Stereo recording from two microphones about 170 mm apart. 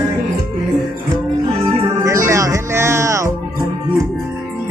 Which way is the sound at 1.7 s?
15° right (ahead or behind).